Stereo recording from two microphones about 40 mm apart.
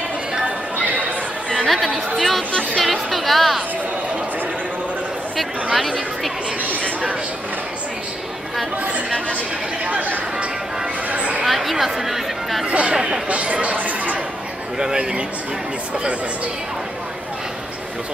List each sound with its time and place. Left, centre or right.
0.7 s a sound: right
1.7 s speech: centre
9.8 s speech: right
11.1 s a sound: right
11.4 s speech: centre
12.6 s speech: right
12.9 s a man's voice: centre
13.3 s speech: right
14.8 s a man's voice: centre